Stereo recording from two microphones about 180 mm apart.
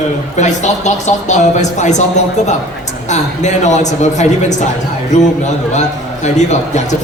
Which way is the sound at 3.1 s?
40° left (ahead or behind).